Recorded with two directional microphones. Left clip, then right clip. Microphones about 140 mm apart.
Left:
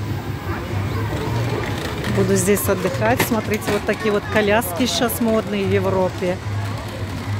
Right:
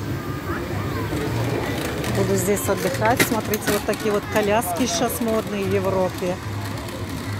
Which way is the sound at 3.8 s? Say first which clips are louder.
Left 2 dB; 25° left (ahead or behind).